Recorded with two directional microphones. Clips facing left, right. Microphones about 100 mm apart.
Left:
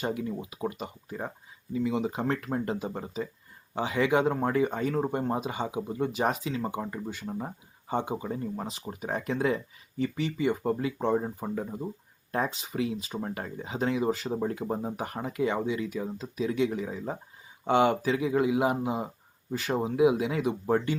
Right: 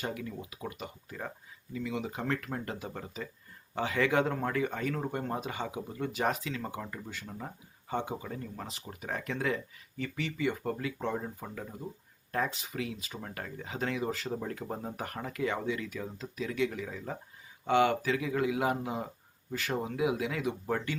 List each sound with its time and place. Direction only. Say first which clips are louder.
0.0 s speech: left 6 dB; 25° left (ahead or behind)